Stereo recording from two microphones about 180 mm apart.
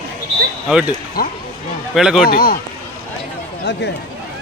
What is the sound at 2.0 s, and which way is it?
Speech, 5° right (ahead or behind).